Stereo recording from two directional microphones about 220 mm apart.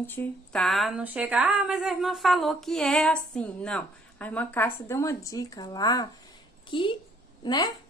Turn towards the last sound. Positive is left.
turn(degrees=20)  # may be behind; listen again after turning